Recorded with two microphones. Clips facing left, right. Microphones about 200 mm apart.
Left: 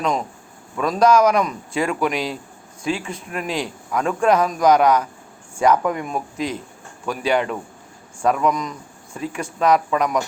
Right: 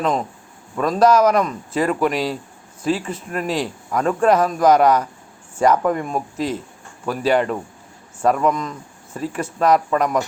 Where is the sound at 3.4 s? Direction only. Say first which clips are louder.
Right 3 dB; 35° right (ahead or behind).